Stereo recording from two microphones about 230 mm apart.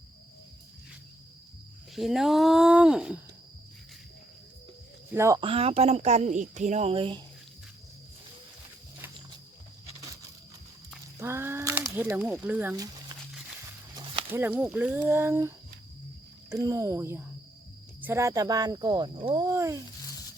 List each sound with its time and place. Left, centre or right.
2.0 s speech: centre
5.1 s speech: centre
5.4 s speech: right
11.2 s a sound: centre
13.9 s speech: centre